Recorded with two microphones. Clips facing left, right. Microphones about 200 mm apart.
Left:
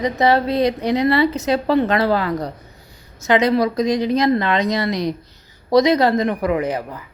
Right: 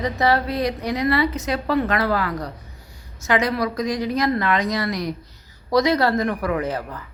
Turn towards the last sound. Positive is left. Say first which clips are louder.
# left 3 dB
turn(degrees=15)  # may be behind; listen again after turning